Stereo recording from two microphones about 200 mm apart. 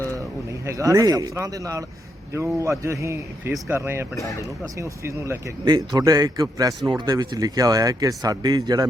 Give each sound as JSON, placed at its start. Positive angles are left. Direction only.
{"t": 0.6, "sound": "speech", "side_deg": -15}
{"t": 4.1, "sound": "speech", "side_deg": 15}
{"t": 4.8, "sound": "speech", "side_deg": -15}